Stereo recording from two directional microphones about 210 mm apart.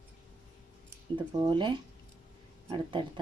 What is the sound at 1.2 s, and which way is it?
Speech, 20° right (ahead or behind).